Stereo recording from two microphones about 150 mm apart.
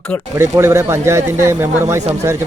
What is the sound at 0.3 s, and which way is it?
A man's voice, 20° right (ahead or behind).